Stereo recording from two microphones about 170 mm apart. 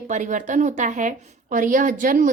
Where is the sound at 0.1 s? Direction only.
50° right (ahead or behind).